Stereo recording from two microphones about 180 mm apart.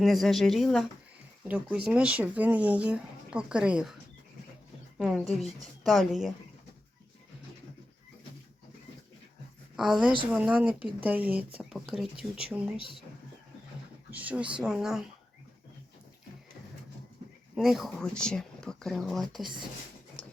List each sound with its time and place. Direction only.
0.0 s speech: centre (ahead or behind)
4.9 s speech: 5° right (ahead or behind)
9.7 s speech: centre (ahead or behind)
12.7 s speech: 30° right (ahead or behind)
14.1 s speech: 10° right (ahead or behind)
17.5 s speech: centre (ahead or behind)